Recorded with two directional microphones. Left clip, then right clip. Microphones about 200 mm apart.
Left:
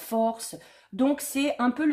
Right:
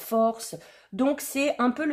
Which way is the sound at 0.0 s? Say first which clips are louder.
Right 2 dB; 30° right (ahead or behind).